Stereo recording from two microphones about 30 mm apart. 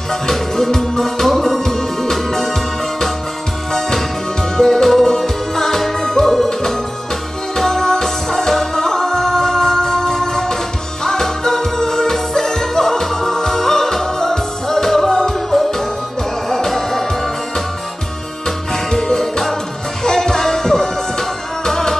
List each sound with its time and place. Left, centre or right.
0.1 s music: centre
4.6 s music: centre
18.7 s music: centre